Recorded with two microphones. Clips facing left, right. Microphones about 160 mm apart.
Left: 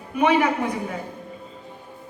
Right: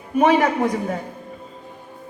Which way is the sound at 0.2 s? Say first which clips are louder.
Right 3 dB; 40° right (ahead or behind).